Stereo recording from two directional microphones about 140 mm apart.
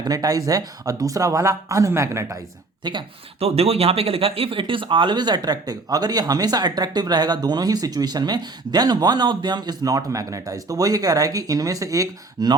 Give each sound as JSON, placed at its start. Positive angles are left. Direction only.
{"t": 0.0, "sound": "speech", "side_deg": -25}
{"t": 2.8, "sound": "speech", "side_deg": -30}
{"t": 3.4, "sound": "speech", "side_deg": -45}